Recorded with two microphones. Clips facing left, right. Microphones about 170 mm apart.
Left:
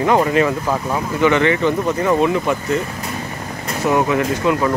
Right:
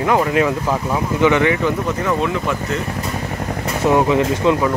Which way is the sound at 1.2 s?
15° right (ahead or behind).